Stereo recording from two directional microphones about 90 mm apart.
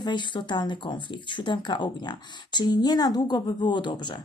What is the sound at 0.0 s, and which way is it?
A woman's voice, 60° left (ahead or behind).